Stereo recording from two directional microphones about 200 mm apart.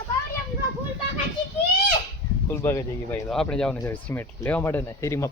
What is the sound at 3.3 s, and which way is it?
Speech, 5° left (ahead or behind).